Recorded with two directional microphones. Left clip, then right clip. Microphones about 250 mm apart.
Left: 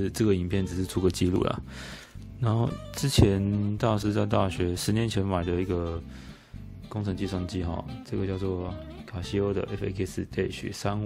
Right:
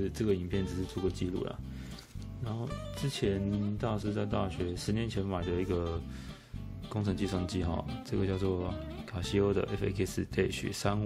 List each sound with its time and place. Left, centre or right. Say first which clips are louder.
0.0 s speech: left 6 dB; left
1.0 s speech: left 10 dB; left; by 5.9 s centre
6.9 s speech: left 2 dB; centre